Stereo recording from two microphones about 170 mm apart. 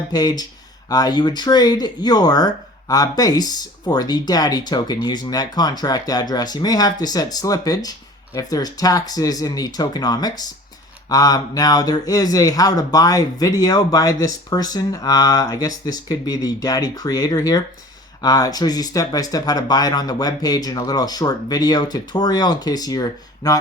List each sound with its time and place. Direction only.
0.1 s speech: 25° left (ahead or behind)